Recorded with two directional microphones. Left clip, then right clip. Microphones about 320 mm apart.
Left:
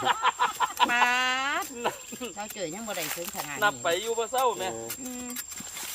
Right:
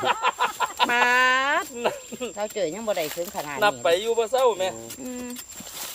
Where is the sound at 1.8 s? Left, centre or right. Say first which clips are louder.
Right 5 dB; right.